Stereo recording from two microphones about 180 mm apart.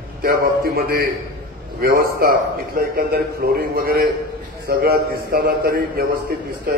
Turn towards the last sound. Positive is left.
turn(degrees=-55)  # may be behind; listen again after turning